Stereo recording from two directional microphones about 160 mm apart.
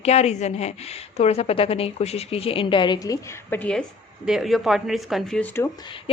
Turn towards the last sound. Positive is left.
turn(degrees=5)  # may be behind; listen again after turning